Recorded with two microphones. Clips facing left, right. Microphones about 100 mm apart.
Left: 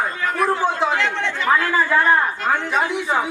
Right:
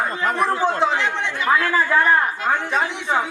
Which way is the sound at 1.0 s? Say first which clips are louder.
Left 1 dB; 15° right (ahead or behind).